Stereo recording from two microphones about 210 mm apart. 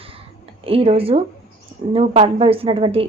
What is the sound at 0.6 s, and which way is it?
A woman's voice, 25° right (ahead or behind).